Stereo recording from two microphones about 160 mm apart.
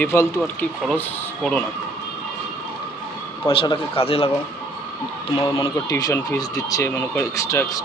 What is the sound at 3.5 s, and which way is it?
Speech, 35° left (ahead or behind).